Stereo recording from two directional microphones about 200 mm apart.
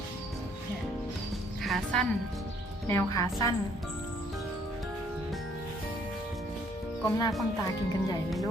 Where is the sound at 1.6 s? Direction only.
Centre (ahead or behind).